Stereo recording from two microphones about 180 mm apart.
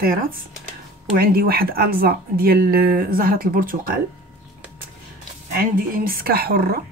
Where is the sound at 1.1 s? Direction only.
55° right (ahead or behind).